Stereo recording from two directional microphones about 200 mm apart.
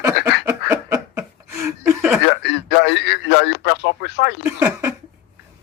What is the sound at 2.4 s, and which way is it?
Radio, 60° left (ahead or behind).